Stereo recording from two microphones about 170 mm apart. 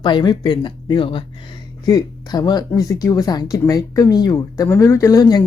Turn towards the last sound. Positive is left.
turn(degrees=20)  # may be behind; listen again after turning